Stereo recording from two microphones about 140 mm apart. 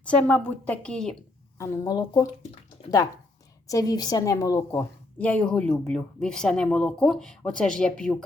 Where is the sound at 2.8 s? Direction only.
45° left (ahead or behind).